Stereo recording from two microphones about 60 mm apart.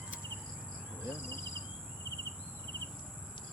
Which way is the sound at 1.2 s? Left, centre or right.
Left.